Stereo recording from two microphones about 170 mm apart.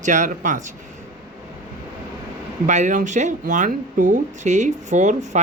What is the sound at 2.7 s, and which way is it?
Speech, 45° right (ahead or behind).